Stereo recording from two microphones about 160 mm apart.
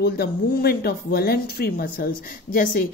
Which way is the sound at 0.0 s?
80° left.